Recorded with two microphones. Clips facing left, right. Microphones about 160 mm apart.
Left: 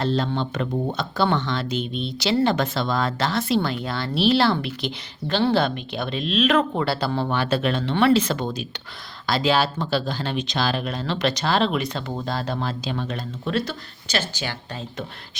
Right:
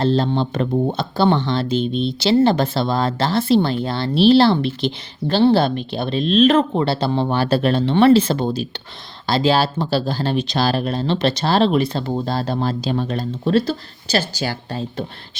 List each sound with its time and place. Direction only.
0.0 s speech: 30° right (ahead or behind)